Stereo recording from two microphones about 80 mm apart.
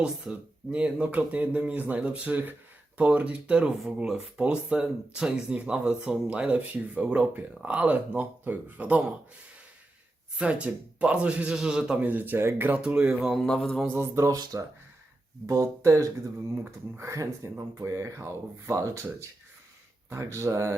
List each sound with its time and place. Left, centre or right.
0.0 s speech: centre
10.3 s speech: centre
12.0 s speech: right
12.8 s speech: centre
13.3 s a man's voice: centre
13.8 s speech: right
15.4 s speech: right